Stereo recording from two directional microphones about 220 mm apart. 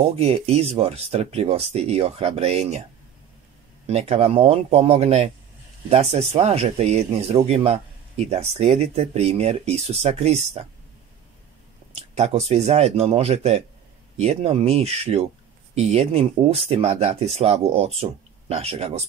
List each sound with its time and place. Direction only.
0.2 s speech: 30° right (ahead or behind)
3.8 s speech: 30° right (ahead or behind)
11.9 s speech: 30° right (ahead or behind)